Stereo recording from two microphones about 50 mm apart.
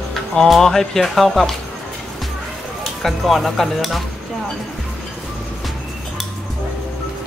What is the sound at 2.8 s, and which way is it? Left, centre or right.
Speech, centre.